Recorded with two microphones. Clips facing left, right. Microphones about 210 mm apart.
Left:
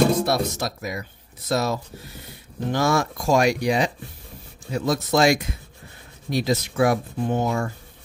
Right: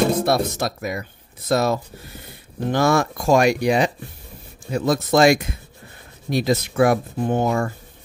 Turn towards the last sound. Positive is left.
turn(degrees=-55)  # may be behind; listen again after turning